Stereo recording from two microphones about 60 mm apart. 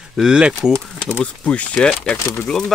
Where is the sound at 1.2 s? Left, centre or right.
Left.